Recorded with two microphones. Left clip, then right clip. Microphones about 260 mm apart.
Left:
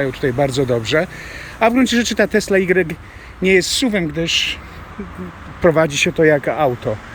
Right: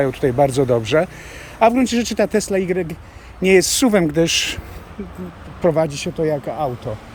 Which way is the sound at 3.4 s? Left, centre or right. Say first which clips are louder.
Even; centre.